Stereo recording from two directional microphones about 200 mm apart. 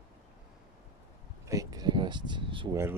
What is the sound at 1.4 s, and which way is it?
Speech, 15° right (ahead or behind).